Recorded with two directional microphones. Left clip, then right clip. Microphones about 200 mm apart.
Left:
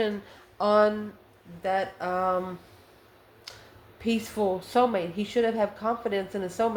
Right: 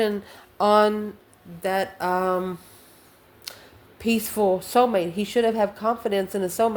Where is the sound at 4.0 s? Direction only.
45° right (ahead or behind).